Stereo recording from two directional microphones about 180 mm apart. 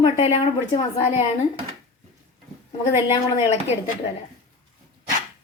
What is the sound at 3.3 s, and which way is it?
Speech, 35° left (ahead or behind).